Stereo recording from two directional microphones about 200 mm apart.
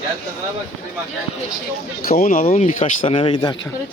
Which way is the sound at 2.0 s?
45° left (ahead or behind).